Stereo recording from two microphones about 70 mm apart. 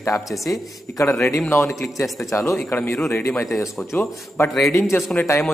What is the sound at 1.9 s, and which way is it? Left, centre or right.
A man's voice, left.